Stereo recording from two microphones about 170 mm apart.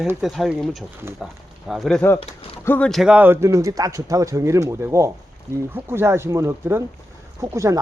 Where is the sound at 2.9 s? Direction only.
5° right (ahead or behind).